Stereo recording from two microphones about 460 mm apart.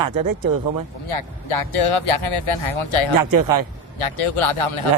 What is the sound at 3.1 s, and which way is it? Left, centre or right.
Speech, right.